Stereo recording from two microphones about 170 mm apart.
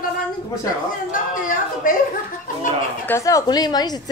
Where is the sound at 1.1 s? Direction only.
50° left (ahead or behind).